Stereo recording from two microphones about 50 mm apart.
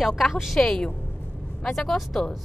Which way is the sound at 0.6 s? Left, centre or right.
Centre.